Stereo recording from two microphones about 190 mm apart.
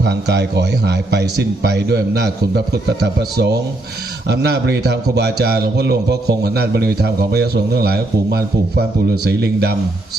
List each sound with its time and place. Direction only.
0.0 s a man's voice: 60° right (ahead or behind)